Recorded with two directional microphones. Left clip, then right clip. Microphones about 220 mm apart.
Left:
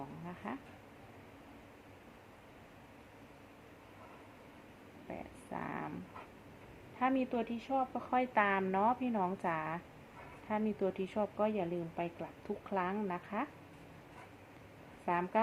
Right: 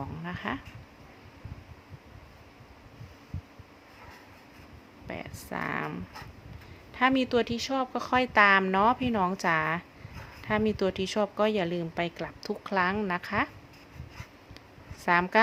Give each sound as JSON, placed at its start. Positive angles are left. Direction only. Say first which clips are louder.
{"t": 0.3, "sound": "speech", "louder": "right 11 dB", "side_deg": -40}
{"t": 5.0, "sound": "speech", "louder": "right 8 dB", "side_deg": -35}
{"t": 7.0, "sound": "speech", "louder": "right 9 dB", "side_deg": -40}
{"t": 15.0, "sound": "speech", "louder": "right 10 dB", "side_deg": -40}